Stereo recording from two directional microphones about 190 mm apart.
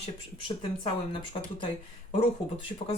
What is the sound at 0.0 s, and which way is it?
Speech, 30° left (ahead or behind).